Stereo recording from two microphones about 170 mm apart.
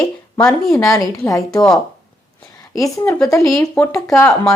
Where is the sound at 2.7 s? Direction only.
20° left (ahead or behind).